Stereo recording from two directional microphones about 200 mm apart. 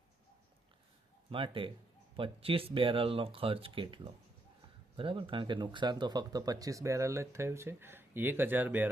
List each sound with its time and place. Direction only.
1.3 s speech: 25° right (ahead or behind); by 8.9 s 10° right (ahead or behind)